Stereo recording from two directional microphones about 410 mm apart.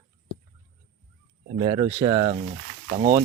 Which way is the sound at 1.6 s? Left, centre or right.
Centre.